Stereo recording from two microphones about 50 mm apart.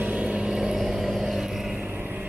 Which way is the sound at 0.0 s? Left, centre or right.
Right.